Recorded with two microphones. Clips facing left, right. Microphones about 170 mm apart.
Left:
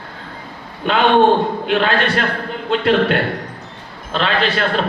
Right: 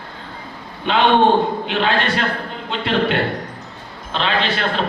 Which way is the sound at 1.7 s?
45° left (ahead or behind).